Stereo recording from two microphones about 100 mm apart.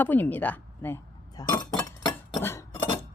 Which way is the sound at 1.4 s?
40° left (ahead or behind).